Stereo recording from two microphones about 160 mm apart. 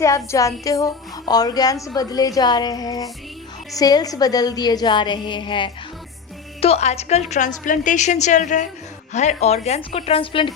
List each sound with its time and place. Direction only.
0.0 s a woman's voice: 20° left (ahead or behind)
6.6 s a woman's voice: 40° left (ahead or behind)